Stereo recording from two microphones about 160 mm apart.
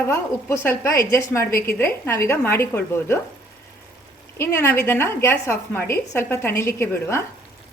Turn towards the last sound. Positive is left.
turn(degrees=15)  # may be behind; listen again after turning